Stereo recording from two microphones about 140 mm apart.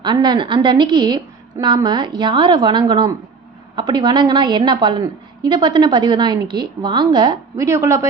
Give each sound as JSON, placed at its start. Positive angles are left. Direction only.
{"t": 0.0, "sound": "a woman's voice", "side_deg": -30}